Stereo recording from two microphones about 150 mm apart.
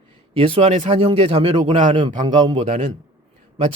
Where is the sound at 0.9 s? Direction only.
35° right (ahead or behind); by 1.9 s 55° right (ahead or behind).